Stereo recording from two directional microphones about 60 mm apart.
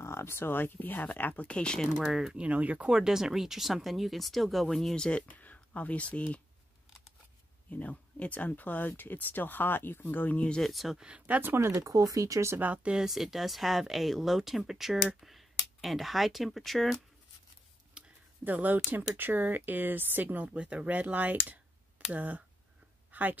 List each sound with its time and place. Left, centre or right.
0.0 s speech: left; by 1.9 s centre
2.0 s speech: centre; by 2.9 s right
2.9 s speech: centre
5.3 s speech: left
7.7 s speech: left
10.6 s speech: centre
11.0 s speech: centre
11.4 s speech: right
11.7 s speech: right
12.5 s speech: right
13.0 s speech: centre
18.0 s a sound: centre
18.4 s speech: right
23.1 s a sound: right